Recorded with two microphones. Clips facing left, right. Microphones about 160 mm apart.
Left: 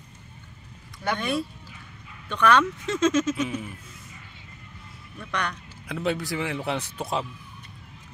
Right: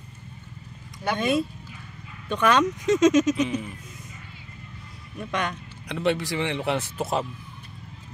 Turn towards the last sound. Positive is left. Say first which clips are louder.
# right 3 dB
turn(degrees=-5)  # may be behind; listen again after turning